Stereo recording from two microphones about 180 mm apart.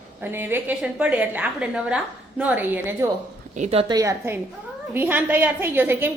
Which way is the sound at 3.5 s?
35° right (ahead or behind).